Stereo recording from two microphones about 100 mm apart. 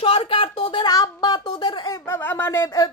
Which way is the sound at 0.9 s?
40° left (ahead or behind).